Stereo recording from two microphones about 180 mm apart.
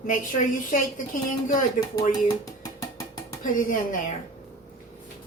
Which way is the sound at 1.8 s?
20° left (ahead or behind).